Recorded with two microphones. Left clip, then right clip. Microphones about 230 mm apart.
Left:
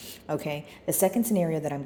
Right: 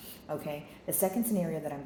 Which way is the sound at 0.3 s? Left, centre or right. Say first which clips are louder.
Left 6 dB; left.